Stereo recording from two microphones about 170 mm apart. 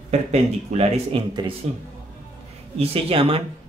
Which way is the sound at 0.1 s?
40° right (ahead or behind).